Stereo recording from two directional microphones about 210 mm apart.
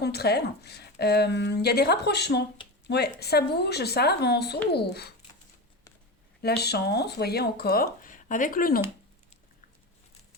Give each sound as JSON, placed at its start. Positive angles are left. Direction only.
{"t": 0.0, "sound": "speech", "side_deg": 50}
{"t": 6.4, "sound": "speech", "side_deg": 50}